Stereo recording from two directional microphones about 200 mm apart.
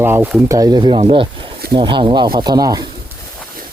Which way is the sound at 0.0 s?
10° right (ahead or behind).